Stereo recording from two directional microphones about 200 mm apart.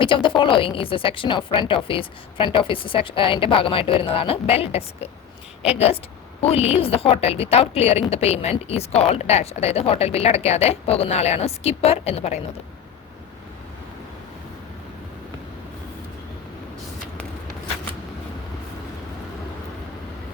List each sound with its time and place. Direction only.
0.0 s a woman's voice: 25° left (ahead or behind)